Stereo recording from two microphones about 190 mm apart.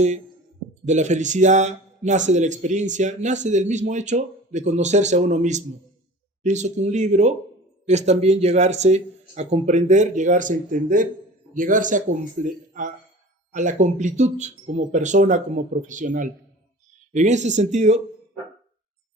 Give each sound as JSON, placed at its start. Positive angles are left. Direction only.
{"t": 0.9, "sound": "a man's voice", "side_deg": -40}